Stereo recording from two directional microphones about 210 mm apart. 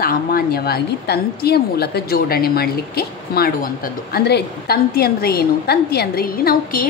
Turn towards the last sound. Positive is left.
turn(degrees=45)  # may be behind; listen again after turning